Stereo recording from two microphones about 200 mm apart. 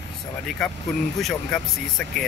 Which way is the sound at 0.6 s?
Centre (ahead or behind).